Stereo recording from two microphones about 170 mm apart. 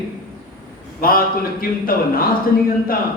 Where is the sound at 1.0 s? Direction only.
60° left (ahead or behind).